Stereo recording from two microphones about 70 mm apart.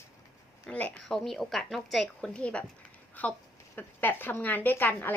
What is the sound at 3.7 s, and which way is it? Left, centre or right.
A woman's voice, left.